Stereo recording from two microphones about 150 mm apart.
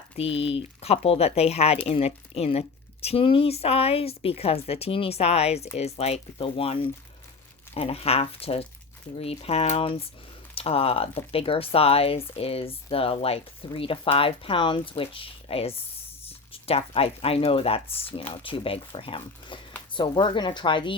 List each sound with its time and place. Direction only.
0.2 s speech: 40° left (ahead or behind)